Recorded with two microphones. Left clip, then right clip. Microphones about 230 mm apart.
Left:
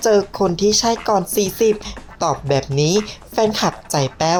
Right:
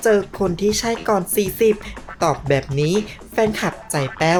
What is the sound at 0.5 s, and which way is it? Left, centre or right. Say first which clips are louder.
Speech: left 4 dB; right.